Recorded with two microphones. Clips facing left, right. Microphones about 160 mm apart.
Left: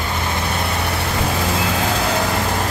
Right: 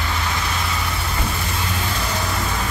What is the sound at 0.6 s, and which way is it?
Vehicle, 65° left (ahead or behind).